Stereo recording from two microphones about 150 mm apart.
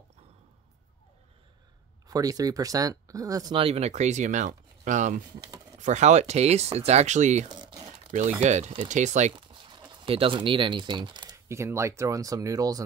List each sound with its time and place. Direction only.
2.0 s speech: 25° right (ahead or behind)
3.5 s speech: 40° right (ahead or behind)
7.4 s crumpling: 30° right (ahead or behind)
8.4 s speech: 50° right (ahead or behind)
9.3 s speech: 30° right (ahead or behind)